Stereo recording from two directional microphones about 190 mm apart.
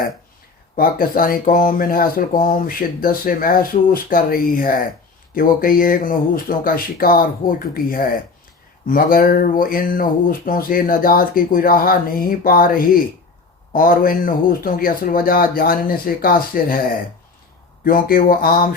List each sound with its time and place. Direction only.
0.8 s speech: 50° left (ahead or behind)
17.8 s speech: 50° left (ahead or behind)